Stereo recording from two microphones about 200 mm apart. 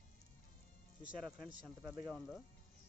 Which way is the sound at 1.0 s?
Centre (ahead or behind).